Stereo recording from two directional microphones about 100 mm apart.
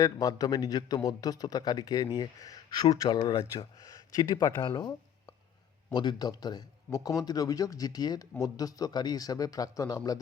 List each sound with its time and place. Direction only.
0.0 s speech: 40° left (ahead or behind)
4.8 s a sound: 45° left (ahead or behind)
5.9 s speech: 45° left (ahead or behind)